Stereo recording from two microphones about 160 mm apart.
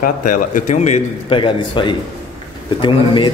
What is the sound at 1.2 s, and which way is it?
Speech, 30° left (ahead or behind).